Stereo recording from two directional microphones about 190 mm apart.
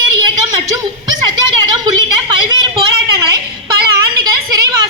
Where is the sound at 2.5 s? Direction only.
25° right (ahead or behind).